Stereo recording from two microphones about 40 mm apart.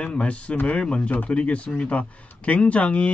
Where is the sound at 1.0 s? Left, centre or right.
Left.